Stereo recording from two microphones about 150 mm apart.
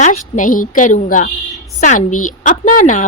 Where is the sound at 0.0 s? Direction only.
55° left (ahead or behind).